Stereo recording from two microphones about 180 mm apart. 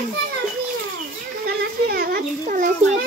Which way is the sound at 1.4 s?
65° right (ahead or behind).